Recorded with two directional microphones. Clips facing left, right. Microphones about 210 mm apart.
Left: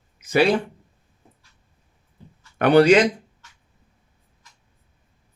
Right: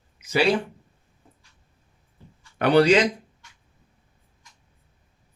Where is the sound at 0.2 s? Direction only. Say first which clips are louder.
Left 4 dB; 55° left (ahead or behind).